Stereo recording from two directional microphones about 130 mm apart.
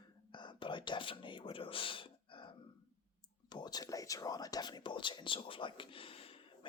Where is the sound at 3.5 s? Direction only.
35° left (ahead or behind).